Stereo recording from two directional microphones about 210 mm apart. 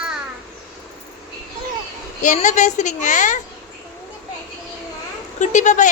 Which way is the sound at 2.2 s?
35° left (ahead or behind).